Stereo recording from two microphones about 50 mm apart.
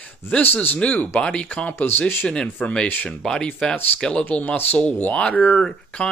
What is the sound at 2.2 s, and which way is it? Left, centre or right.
Speech, centre.